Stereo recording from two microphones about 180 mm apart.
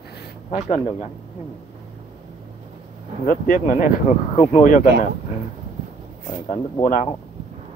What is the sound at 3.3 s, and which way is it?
Speech, 50° left (ahead or behind).